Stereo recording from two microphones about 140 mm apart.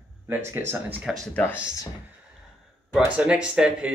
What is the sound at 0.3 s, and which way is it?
Speech, 15° right (ahead or behind).